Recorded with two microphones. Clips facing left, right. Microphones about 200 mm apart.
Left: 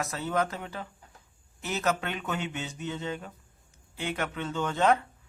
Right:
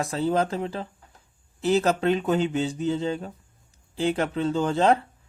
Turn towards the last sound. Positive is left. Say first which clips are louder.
# right 4 dB
turn(degrees=-30)  # may be behind; listen again after turning